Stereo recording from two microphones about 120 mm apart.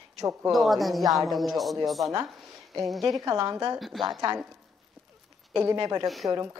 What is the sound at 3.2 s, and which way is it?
Speech, 30° right (ahead or behind).